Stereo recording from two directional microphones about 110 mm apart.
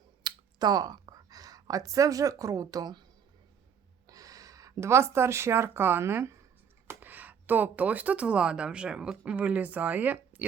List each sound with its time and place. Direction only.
0.2 s speech: 40° right (ahead or behind)
4.1 s speech: 35° right (ahead or behind); by 10.4 s 15° right (ahead or behind)